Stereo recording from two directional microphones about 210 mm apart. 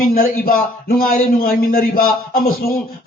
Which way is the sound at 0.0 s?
45° left (ahead or behind).